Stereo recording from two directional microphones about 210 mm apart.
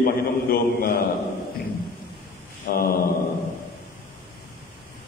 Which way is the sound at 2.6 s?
45° left (ahead or behind).